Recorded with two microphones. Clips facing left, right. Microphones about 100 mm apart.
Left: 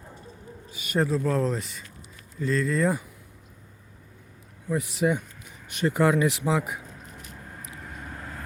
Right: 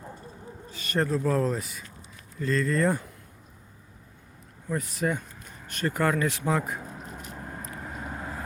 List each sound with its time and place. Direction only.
0.7 s a sound: 15° left (ahead or behind)
0.9 s speech: centre (ahead or behind)
4.7 s speech: 15° left (ahead or behind)
7.7 s vehicle: 35° right (ahead or behind)
8.0 s vehicle: 20° right (ahead or behind)